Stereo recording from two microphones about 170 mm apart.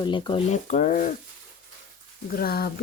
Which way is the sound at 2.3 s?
65° left (ahead or behind).